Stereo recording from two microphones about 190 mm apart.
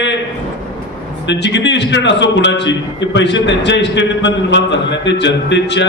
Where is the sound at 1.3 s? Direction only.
70° left (ahead or behind).